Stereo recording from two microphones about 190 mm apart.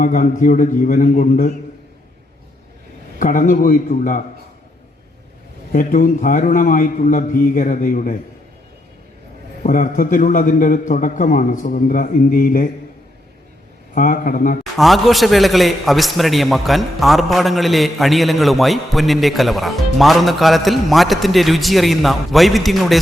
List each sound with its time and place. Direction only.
0.0 s a man's voice: 45° left (ahead or behind)
3.2 s a man's voice: 45° left (ahead or behind)
5.7 s a man's voice: 45° left (ahead or behind)
9.6 s a man's voice: 45° left (ahead or behind)
13.9 s a man's voice: 45° left (ahead or behind)
14.6 s a man's voice: centre (ahead or behind)